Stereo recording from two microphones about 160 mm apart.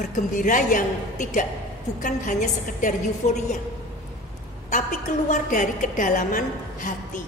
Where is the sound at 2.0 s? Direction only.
55° left (ahead or behind).